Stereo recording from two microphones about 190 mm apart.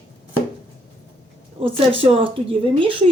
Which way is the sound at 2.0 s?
30° right (ahead or behind).